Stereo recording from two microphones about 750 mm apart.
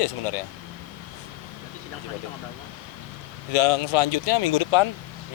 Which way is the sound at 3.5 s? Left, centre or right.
Left.